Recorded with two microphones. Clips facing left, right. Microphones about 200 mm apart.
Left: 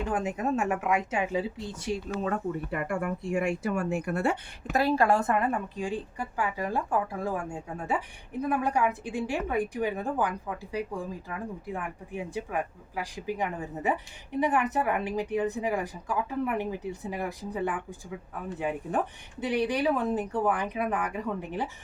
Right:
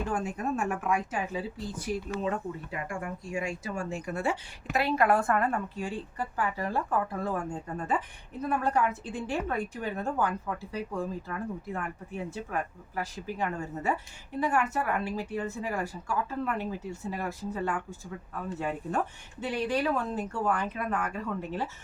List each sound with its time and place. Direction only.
0.0 s speech: 20° left (ahead or behind)
2.2 s speech: 60° left (ahead or behind)
4.8 s speech: 30° left (ahead or behind)